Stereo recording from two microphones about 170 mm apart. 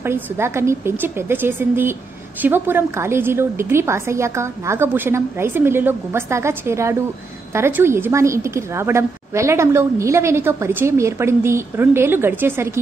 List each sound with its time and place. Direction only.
0.0 s a woman's voice: 15° right (ahead or behind)